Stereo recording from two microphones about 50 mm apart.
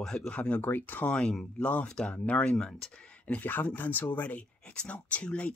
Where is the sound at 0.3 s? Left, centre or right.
Left.